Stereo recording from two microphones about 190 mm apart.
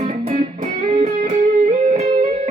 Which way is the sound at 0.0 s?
35° right (ahead or behind).